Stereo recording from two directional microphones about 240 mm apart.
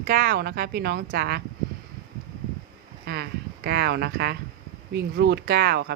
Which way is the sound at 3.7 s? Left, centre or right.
Right.